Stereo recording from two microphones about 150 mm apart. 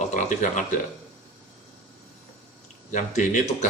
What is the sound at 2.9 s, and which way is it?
Speech, 50° left (ahead or behind).